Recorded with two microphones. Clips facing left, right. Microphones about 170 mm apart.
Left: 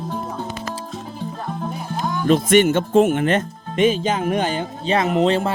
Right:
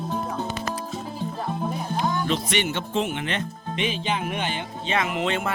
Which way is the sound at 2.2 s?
50° left (ahead or behind).